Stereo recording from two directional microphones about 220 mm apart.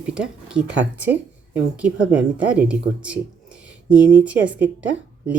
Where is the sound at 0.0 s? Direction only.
5° right (ahead or behind).